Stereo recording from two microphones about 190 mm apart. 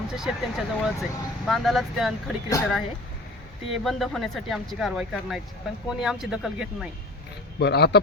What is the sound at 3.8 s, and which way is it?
Speech, centre (ahead or behind).